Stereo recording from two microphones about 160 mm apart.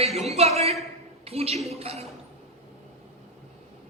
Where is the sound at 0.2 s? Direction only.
40° right (ahead or behind).